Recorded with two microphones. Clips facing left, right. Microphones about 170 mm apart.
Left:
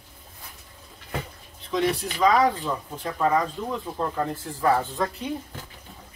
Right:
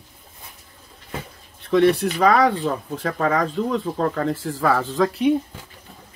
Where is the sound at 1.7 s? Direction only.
65° right (ahead or behind); by 5.3 s 90° right.